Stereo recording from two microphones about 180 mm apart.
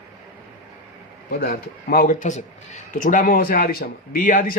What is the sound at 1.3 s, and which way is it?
A man's voice, 55° left (ahead or behind).